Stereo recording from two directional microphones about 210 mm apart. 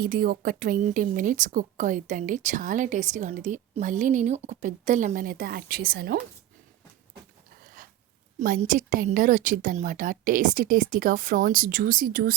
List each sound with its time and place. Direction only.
0.0 s a woman's voice: 45° right (ahead or behind)
8.4 s a woman's voice: 40° right (ahead or behind)